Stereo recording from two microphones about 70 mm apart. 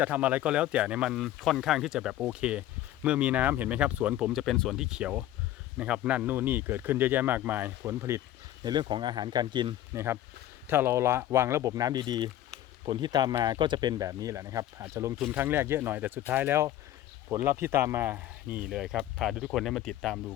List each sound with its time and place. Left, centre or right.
0.0 s speech: right
1.2 s speech: centre; by 4.3 s right
4.3 s speech: centre
4.8 s speech: centre
7.9 s speech: right
8.6 s speech: right
9.9 s speech: right
11.7 s speech: right
14.8 s speech: right
15.3 s speech: right
18.7 s speech: centre